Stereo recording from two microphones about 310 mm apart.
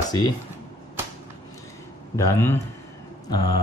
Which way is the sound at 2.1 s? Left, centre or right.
Centre.